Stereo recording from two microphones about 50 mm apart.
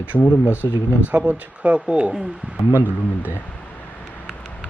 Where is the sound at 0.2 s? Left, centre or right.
Left.